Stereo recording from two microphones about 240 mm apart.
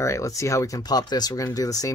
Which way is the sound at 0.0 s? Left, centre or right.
Centre.